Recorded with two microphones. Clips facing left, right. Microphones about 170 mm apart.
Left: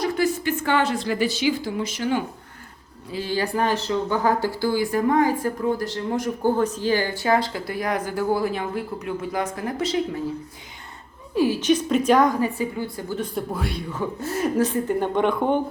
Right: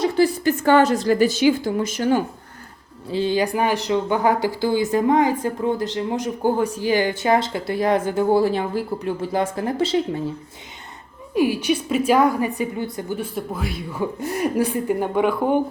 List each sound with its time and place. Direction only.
0.0 s a woman's voice: 30° right (ahead or behind)
3.1 s speech: 25° right (ahead or behind)
11.3 s speech: 15° right (ahead or behind)